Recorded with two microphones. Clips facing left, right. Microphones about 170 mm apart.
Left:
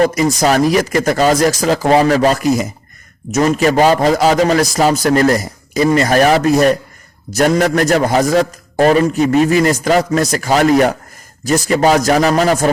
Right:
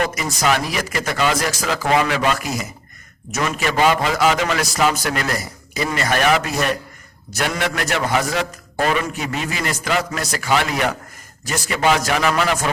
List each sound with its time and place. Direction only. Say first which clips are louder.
0.0 s a man's voice: left 8 dB; 35° left (ahead or behind)